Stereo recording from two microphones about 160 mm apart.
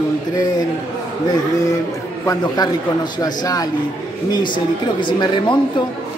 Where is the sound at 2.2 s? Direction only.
25° left (ahead or behind).